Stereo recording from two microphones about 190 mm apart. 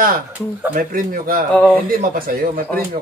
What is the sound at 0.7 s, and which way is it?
Speech, 45° right (ahead or behind).